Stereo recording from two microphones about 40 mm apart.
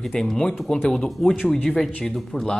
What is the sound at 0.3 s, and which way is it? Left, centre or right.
A man's voice, centre.